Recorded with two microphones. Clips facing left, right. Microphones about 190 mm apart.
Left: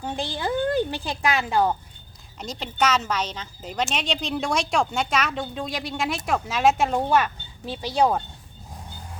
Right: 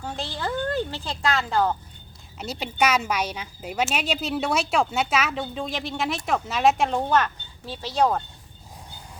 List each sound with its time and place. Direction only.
0.0 s a woman's voice: 15° left (ahead or behind)
2.4 s speech: 10° right (ahead or behind); by 8.2 s 10° left (ahead or behind)